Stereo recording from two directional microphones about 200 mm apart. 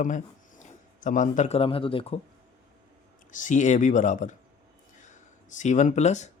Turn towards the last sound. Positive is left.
turn(degrees=35)  # may be behind; listen again after turning